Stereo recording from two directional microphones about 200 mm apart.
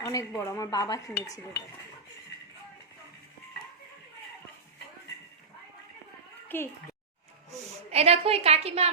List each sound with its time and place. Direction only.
0.0 s dishes: 15° left (ahead or behind)
6.5 s dishes: 10° left (ahead or behind)
7.9 s a woman's voice: 30° right (ahead or behind)